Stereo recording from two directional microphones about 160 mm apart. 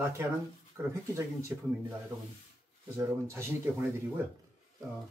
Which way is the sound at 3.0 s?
15° right (ahead or behind).